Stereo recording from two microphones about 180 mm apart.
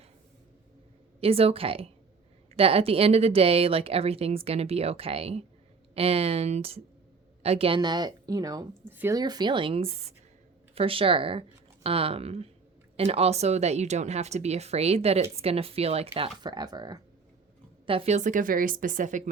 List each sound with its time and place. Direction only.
1.2 s a woman's voice: 35° right (ahead or behind)
17.8 s a woman's voice: 35° right (ahead or behind)